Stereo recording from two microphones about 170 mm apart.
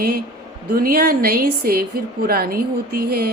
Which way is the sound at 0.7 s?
60° right (ahead or behind).